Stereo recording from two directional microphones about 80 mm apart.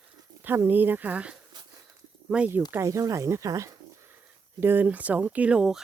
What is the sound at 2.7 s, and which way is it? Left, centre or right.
Speech, right.